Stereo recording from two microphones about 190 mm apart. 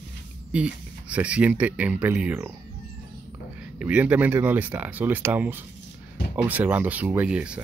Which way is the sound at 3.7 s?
5° right (ahead or behind).